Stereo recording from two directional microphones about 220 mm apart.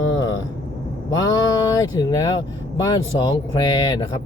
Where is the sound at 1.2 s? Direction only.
20° left (ahead or behind).